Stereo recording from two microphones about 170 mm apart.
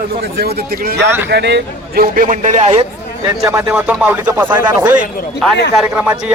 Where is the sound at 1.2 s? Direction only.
80° right; by 2.9 s 40° right (ahead or behind).